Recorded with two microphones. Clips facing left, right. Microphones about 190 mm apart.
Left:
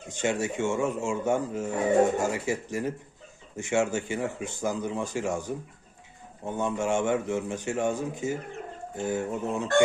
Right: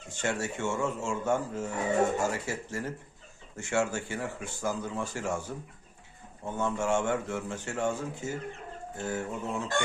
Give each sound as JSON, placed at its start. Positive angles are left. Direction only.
{"t": 0.1, "sound": "speech", "side_deg": 15}